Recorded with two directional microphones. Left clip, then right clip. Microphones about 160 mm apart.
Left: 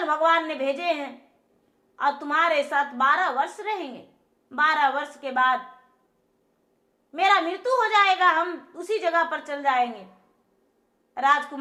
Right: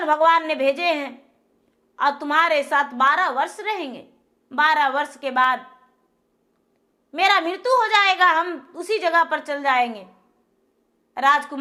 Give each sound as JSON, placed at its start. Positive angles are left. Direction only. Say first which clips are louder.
{"t": 0.0, "sound": "a woman's voice", "louder": "right 4 dB", "side_deg": -20}
{"t": 7.1, "sound": "a woman's voice", "louder": "right 2 dB", "side_deg": -20}
{"t": 11.1, "sound": "a woman's voice", "louder": "right 3 dB", "side_deg": -15}